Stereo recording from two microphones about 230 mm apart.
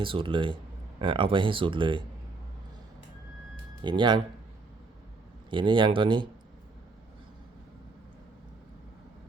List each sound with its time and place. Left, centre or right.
0.0 s speech: right
3.8 s speech: centre
5.5 s speech: right